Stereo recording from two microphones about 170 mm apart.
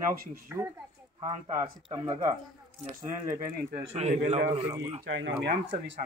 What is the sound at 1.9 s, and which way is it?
Speech, 25° right (ahead or behind).